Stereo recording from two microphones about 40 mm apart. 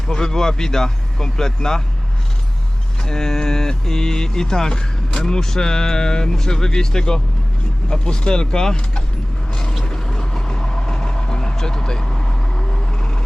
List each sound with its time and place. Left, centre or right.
0.1 s speech: centre
3.0 s speech: centre
9.5 s mechanisms: centre
9.8 s vehicle: centre